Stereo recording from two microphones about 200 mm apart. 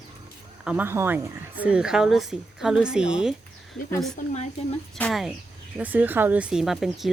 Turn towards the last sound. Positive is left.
turn(degrees=0)  # may be behind; listen again after turning